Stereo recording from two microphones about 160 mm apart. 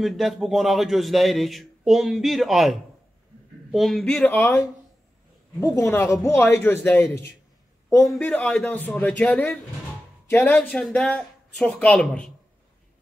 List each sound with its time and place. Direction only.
0.0 s a man's voice: centre (ahead or behind)
5.8 s speech: 15° left (ahead or behind)